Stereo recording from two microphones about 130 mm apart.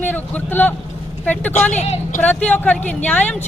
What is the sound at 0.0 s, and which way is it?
Speech, 15° left (ahead or behind).